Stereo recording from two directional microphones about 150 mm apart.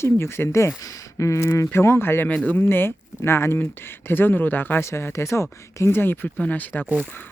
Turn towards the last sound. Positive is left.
turn(degrees=5)  # may be behind; listen again after turning